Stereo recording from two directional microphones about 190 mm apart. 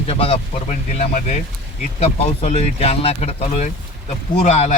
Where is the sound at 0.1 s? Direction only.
30° left (ahead or behind).